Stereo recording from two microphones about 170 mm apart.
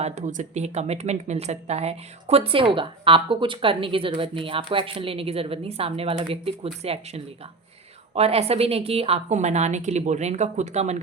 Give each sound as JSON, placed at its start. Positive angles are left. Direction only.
{"t": 0.0, "sound": "speech", "side_deg": -45}